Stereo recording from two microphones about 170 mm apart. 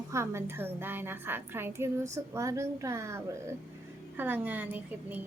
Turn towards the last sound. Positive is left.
turn(degrees=-10)  # may be behind; listen again after turning